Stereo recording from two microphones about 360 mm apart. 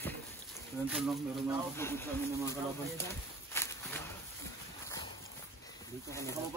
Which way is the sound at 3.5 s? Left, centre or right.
Centre.